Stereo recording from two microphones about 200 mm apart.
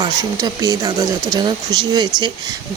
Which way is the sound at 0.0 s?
20° right (ahead or behind).